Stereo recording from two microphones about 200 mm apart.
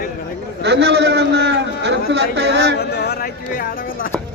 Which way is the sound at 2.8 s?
55° left (ahead or behind).